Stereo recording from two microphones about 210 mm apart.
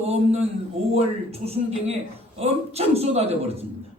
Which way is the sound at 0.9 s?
30° right (ahead or behind).